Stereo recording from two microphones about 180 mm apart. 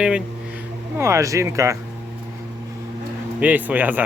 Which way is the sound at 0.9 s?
15° right (ahead or behind).